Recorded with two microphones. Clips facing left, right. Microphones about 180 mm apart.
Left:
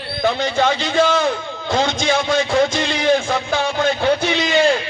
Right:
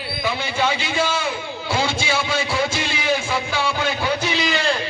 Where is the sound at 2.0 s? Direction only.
50° left (ahead or behind).